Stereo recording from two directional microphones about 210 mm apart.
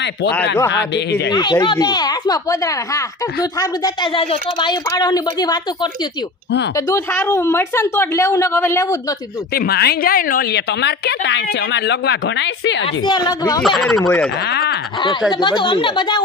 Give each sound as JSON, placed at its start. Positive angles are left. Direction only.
{"t": 0.7, "sound": "a woman's voice", "side_deg": 55}
{"t": 1.3, "sound": "a woman's voice", "side_deg": 20}
{"t": 6.9, "sound": "a woman's voice", "side_deg": 10}
{"t": 9.5, "sound": "a woman's voice", "side_deg": 45}
{"t": 12.8, "sound": "a woman's voice", "side_deg": 20}
{"t": 13.6, "sound": "speech", "side_deg": 0}
{"t": 13.9, "sound": "a woman's voice", "side_deg": 10}
{"t": 14.4, "sound": "a woman's voice", "side_deg": 50}
{"t": 15.3, "sound": "a woman's voice", "side_deg": 20}